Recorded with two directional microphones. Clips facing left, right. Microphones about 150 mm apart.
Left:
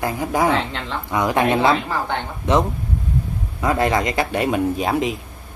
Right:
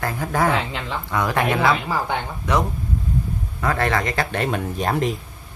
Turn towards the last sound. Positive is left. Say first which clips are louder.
# left 2 dB
turn(degrees=5)  # may be behind; listen again after turning